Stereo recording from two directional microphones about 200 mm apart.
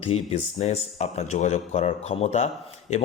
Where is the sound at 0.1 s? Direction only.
30° left (ahead or behind).